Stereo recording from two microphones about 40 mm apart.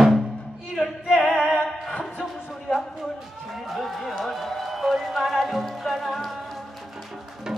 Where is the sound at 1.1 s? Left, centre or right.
Left.